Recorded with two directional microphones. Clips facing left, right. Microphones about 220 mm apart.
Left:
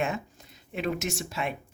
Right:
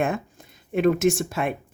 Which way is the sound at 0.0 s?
50° right (ahead or behind).